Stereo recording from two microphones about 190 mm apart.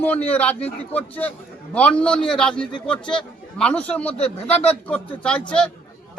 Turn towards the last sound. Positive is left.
turn(degrees=5)  # may be behind; listen again after turning